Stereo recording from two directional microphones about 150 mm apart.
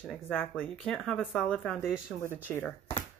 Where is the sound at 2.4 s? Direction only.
15° left (ahead or behind).